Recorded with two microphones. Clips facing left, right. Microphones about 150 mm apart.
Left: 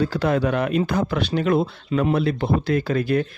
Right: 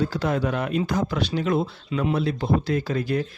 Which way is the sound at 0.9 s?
60° left (ahead or behind).